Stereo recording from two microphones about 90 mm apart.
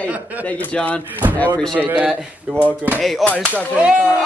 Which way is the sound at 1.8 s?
20° right (ahead or behind).